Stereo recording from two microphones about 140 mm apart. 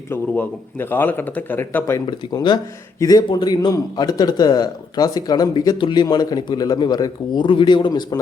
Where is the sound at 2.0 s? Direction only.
30° left (ahead or behind).